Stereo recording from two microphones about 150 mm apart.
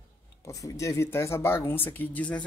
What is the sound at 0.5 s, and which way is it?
Speech, 20° left (ahead or behind).